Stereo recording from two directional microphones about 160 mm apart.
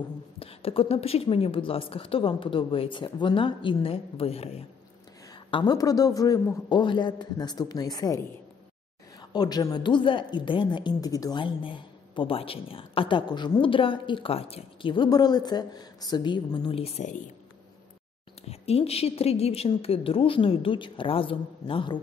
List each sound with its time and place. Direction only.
0.4 s speech: 35° left (ahead or behind)
5.5 s a man's voice: 30° left (ahead or behind)
9.3 s speech: 25° left (ahead or behind); by 17.2 s 45° left (ahead or behind)
18.5 s speech: 40° left (ahead or behind)